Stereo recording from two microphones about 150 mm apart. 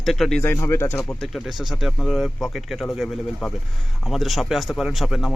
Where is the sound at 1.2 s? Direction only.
Centre (ahead or behind).